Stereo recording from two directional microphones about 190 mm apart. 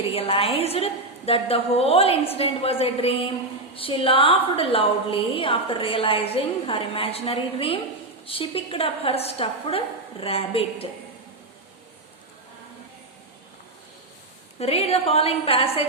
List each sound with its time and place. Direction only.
0.1 s a woman's voice: 30° left (ahead or behind)
14.6 s a woman's voice: 30° left (ahead or behind)